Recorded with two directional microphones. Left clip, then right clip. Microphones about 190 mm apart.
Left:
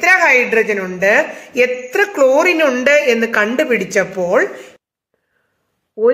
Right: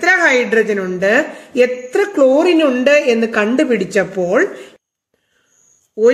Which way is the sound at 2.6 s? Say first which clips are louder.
Even; 30° right (ahead or behind).